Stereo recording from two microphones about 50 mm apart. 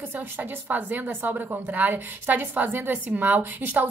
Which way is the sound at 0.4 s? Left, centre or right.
Right.